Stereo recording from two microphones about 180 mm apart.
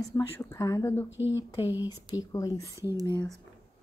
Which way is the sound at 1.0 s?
90° left.